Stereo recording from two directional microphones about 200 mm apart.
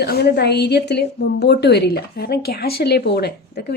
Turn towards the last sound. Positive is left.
turn(degrees=55)  # may be behind; listen again after turning